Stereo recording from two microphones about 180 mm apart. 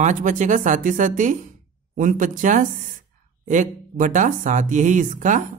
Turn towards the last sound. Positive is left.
turn(degrees=-45)  # may be behind; listen again after turning